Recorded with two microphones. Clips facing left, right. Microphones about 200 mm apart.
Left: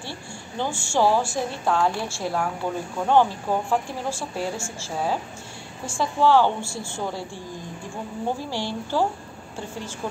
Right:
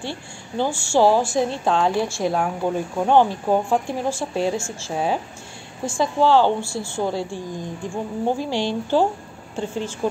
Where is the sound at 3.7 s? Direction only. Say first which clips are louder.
Right 4 dB; 20° right (ahead or behind).